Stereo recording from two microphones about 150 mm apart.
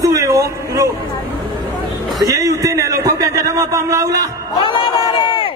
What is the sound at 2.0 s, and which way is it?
A man's voice, 25° right (ahead or behind).